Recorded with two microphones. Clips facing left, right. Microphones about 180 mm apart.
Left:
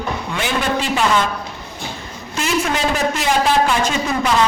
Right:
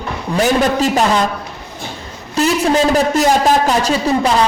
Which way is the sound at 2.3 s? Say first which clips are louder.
Right 6 dB; 35° right (ahead or behind).